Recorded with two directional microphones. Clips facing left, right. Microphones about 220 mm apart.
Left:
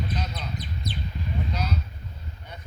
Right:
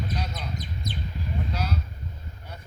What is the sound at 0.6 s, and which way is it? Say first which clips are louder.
Speech: left 1 dB; 45° right (ahead or behind).